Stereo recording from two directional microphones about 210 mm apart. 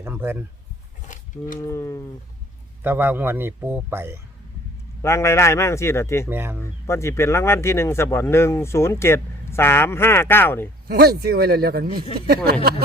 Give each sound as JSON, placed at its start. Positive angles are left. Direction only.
{"t": 0.0, "sound": "speech", "side_deg": -10}
{"t": 1.0, "sound": "a sound", "side_deg": 35}
{"t": 1.6, "sound": "speech", "side_deg": 15}
{"t": 2.8, "sound": "a man's voice", "side_deg": -10}
{"t": 5.0, "sound": "speech", "side_deg": 15}
{"t": 6.2, "sound": "a man's voice", "side_deg": -10}
{"t": 6.8, "sound": "speech", "side_deg": 15}
{"t": 10.8, "sound": "speech", "side_deg": -45}